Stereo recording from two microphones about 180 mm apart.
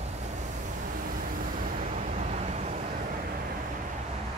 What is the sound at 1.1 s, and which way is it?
Vehicle, 50° right (ahead or behind).